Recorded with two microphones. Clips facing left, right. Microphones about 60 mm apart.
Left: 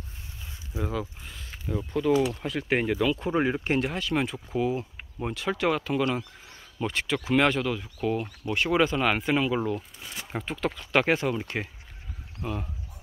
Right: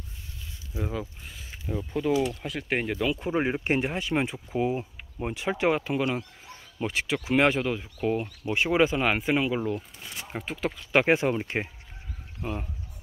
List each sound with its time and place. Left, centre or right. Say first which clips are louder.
0.9 s speech: left 2 dB; centre
2.4 s speech: left 3 dB; centre
3.6 s speech: even; right